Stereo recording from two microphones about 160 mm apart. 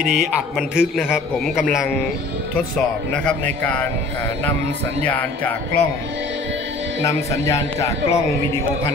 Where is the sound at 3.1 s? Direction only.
10° left (ahead or behind).